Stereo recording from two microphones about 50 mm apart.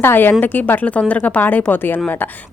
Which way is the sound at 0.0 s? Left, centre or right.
Left.